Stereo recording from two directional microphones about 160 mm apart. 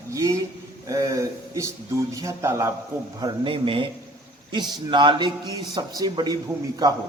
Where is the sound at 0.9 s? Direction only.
20° right (ahead or behind).